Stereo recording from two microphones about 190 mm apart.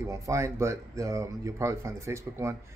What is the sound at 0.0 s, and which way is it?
Speech, 15° right (ahead or behind).